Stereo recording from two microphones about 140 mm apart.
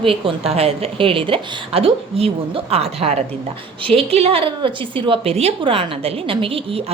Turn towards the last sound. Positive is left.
turn(degrees=-40)  # may be behind; listen again after turning